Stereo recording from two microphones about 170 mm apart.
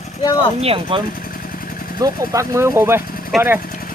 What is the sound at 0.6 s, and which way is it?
Speech, 35° right (ahead or behind).